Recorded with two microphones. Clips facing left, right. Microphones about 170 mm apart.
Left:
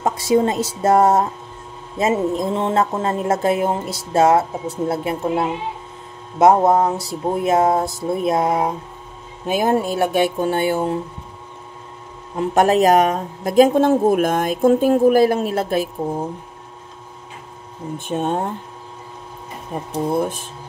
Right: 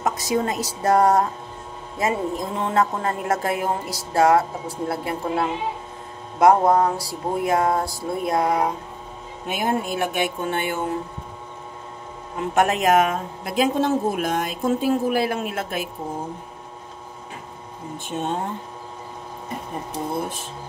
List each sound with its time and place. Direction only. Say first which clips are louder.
0.0 s speech: left 6 dB; 25° left (ahead or behind)
9.5 s speech: left 6 dB; 35° left (ahead or behind)
12.4 s speech: left 6 dB; 35° left (ahead or behind)
17.9 s speech: left 5 dB; 55° left (ahead or behind)